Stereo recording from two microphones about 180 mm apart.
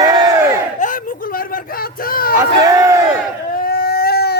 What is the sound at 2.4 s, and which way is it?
Crowd, 20° right (ahead or behind).